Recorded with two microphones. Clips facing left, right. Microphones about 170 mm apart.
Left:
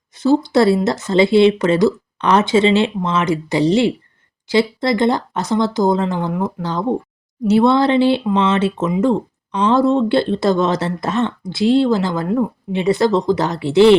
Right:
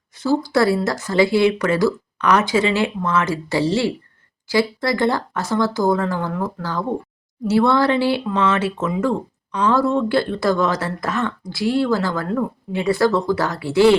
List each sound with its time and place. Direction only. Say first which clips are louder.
0.2 s speech: left 4 dB; 20° left (ahead or behind)